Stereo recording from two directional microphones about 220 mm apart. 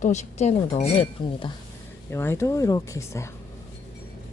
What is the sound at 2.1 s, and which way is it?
Speech, 10° left (ahead or behind).